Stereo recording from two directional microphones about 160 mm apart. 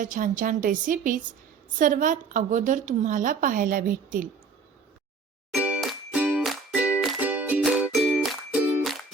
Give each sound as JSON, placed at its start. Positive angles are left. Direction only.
{"t": 0.0, "sound": "a woman's voice", "side_deg": -55}
{"t": 5.5, "sound": "music", "side_deg": -5}